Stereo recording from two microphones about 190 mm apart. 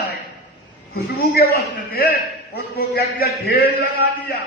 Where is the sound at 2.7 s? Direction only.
55° left (ahead or behind).